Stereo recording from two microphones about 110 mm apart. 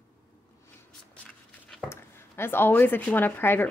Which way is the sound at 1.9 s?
20° left (ahead or behind).